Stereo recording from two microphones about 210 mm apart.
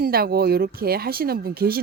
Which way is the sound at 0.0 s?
45° right (ahead or behind).